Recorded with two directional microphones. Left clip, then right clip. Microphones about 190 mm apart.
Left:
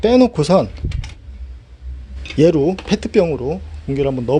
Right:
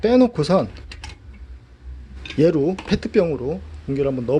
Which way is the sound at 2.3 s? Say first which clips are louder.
Left 4 dB; 10° left (ahead or behind).